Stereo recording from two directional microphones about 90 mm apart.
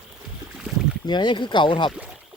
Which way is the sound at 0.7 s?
Centre (ahead or behind).